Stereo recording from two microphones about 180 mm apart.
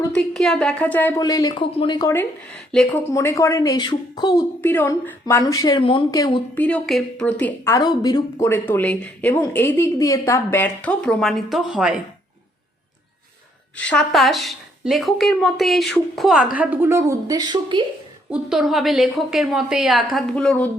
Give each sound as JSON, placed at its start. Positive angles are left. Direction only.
{"t": 0.1, "sound": "a woman's voice", "side_deg": 5}
{"t": 4.6, "sound": "a woman's voice", "side_deg": 10}
{"t": 6.5, "sound": "a woman's voice", "side_deg": 10}
{"t": 13.7, "sound": "speech", "side_deg": 5}
{"t": 16.6, "sound": "speech", "side_deg": -10}
{"t": 18.3, "sound": "speech", "side_deg": -5}